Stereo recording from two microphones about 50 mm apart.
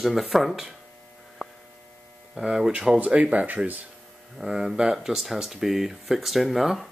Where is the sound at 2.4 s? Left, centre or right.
Centre.